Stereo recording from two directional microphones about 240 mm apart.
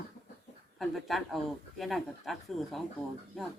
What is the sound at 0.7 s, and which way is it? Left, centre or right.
Speech, centre.